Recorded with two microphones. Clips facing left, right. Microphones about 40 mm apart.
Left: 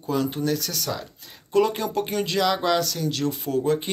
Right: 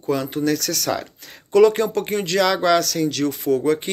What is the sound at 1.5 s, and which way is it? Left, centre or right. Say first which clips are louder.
Speech: right 7 dB; right.